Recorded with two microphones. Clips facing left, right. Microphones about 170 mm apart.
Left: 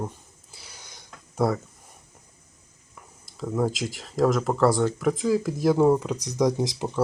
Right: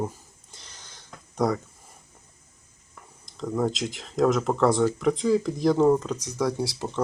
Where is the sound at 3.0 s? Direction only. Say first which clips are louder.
Even; 5° left (ahead or behind).